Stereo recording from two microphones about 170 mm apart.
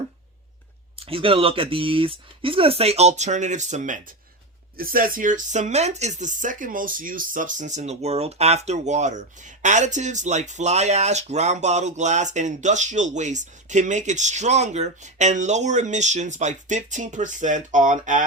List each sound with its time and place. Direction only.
0.9 s speech: 35° right (ahead or behind)
4.8 s speech: 60° right (ahead or behind)